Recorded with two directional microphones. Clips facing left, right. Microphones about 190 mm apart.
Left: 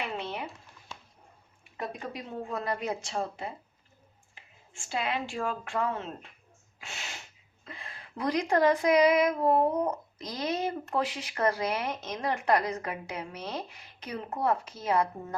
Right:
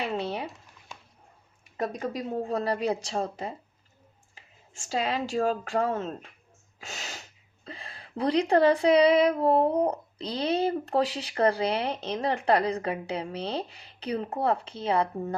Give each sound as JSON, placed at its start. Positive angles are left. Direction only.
{"t": 0.0, "sound": "a sound", "side_deg": -35}
{"t": 1.7, "sound": "speech", "side_deg": -40}
{"t": 4.7, "sound": "speech", "side_deg": -40}